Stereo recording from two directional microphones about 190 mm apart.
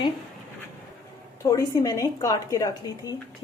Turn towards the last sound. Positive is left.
turn(degrees=20)  # may be behind; listen again after turning